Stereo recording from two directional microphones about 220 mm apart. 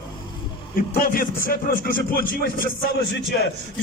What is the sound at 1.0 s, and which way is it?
Speech, 40° left (ahead or behind).